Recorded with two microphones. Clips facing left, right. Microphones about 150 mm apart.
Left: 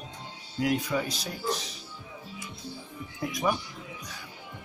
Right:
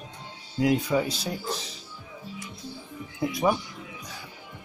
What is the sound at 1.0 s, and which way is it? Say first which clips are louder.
Speech: right 1 dB; 30° right (ahead or behind).